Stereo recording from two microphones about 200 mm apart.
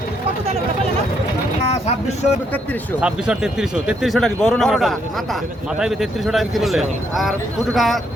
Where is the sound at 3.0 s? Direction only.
5° right (ahead or behind).